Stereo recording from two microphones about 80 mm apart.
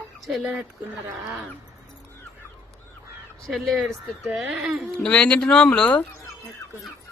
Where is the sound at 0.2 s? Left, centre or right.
Centre.